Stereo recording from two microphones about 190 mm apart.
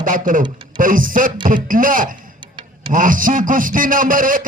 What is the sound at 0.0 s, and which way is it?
A man's voice, 45° right (ahead or behind).